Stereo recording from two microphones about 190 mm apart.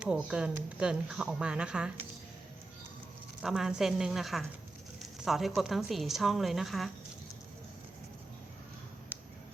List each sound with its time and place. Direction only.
0.0 s speech: 5° right (ahead or behind)
3.4 s speech: 5° right (ahead or behind)
9.1 s a sound: 10° right (ahead or behind)